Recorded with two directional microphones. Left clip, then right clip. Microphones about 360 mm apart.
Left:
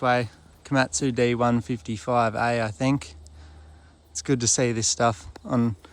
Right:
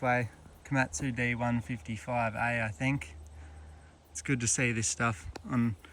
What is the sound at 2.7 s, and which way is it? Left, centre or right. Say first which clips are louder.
Speech: left 8 dB; left.